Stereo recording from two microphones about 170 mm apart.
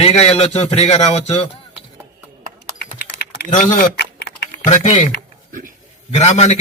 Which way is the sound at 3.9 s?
80° left.